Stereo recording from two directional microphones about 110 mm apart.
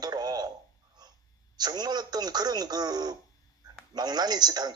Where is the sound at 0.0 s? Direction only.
35° right (ahead or behind).